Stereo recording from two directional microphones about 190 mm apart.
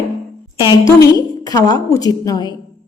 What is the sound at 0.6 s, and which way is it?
A woman's voice, 20° left (ahead or behind).